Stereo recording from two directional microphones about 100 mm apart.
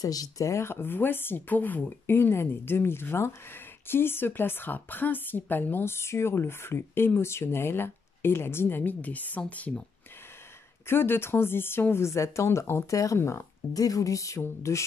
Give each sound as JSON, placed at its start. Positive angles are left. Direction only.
{"t": 0.0, "sound": "speech", "side_deg": 40}
{"t": 10.9, "sound": "speech", "side_deg": 25}